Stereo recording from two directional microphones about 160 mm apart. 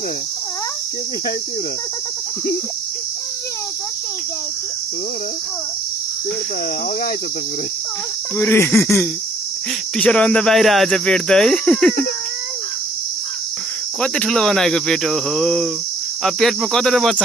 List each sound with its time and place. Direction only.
8.4 s cricket: 15° left (ahead or behind)
9.9 s speech: 5° left (ahead or behind)
14.0 s speech: 5° left (ahead or behind)